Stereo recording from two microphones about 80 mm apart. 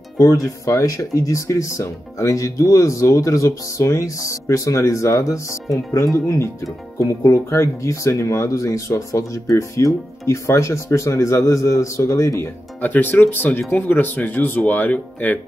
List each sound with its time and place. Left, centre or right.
0.2 s speech: left
12.8 s speech: left